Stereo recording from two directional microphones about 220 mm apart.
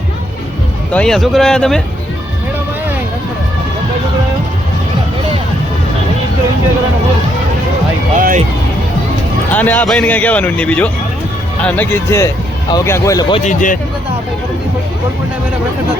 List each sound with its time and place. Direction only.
0.9 s speech: centre (ahead or behind)
8.2 s speech: 35° right (ahead or behind)
9.5 s speech: 5° left (ahead or behind)
13.4 s speech: 35° left (ahead or behind)